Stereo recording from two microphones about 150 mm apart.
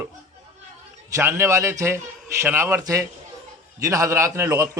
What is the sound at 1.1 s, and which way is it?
A man's voice, 15° right (ahead or behind).